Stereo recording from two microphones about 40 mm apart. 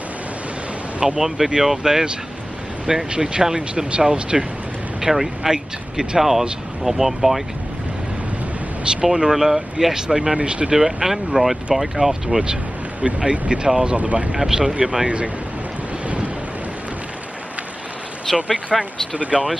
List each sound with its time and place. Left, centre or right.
1.0 s speech: centre
5.0 s speech: centre
9.0 s speech: centre
10.3 s speech: right; by 12.1 s centre
12.1 s speech: centre
13.0 s speech: right
13.9 s speech: right
14.3 s speech: centre
15.0 s speech: right
18.3 s speech: centre
18.7 s speech: centre
19.3 s speech: right